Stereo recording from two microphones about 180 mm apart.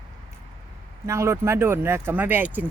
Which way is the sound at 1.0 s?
15° right (ahead or behind).